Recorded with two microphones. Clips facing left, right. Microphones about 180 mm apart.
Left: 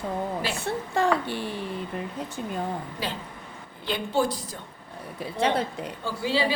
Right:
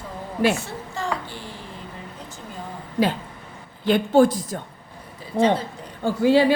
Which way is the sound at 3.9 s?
50° right (ahead or behind).